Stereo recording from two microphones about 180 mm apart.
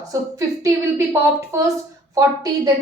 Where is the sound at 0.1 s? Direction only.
15° right (ahead or behind).